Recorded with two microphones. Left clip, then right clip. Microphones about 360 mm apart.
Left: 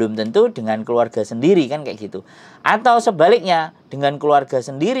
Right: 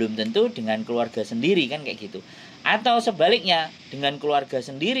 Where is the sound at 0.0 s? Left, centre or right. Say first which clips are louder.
Left 7 dB; left.